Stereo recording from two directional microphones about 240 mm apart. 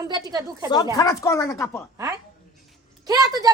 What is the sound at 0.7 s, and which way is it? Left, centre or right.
Speech, centre.